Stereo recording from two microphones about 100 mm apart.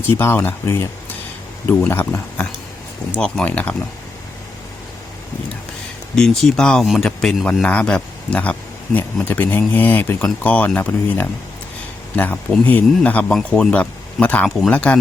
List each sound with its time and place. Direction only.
0.2 s speech: 20° left (ahead or behind)
1.7 s speech: 10° left (ahead or behind)
2.0 s speech: 25° left (ahead or behind)
3.2 s speech: 10° left (ahead or behind)
6.1 s speech: 5° left (ahead or behind)